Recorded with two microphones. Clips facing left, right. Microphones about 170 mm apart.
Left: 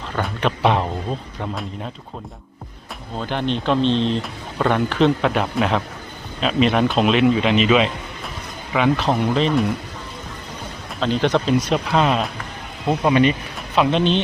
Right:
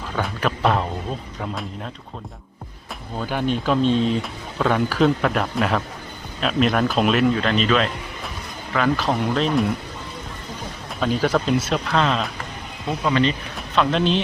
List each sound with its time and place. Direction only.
0.1 s speech: centre (ahead or behind)
3.2 s speech: 5° right (ahead or behind)
11.0 s speech: 5° right (ahead or behind)
11.9 s speech: 10° left (ahead or behind)
13.7 s speech: centre (ahead or behind)